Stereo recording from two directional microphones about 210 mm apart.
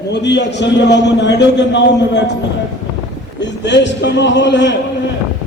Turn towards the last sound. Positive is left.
turn(degrees=55)  # may be behind; listen again after turning